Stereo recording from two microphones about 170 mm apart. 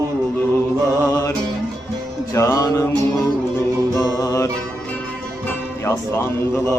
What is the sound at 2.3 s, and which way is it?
Music, 20° left (ahead or behind).